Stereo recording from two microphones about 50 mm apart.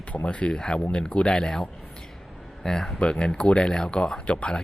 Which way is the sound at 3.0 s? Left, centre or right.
Centre.